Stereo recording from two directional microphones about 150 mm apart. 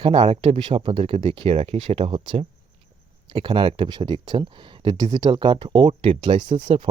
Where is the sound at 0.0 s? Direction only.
35° right (ahead or behind).